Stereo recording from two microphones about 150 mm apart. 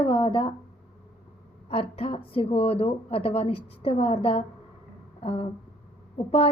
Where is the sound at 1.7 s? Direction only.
40° left (ahead or behind).